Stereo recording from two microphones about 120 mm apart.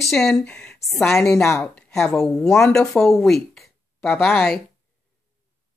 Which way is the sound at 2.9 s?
Centre (ahead or behind).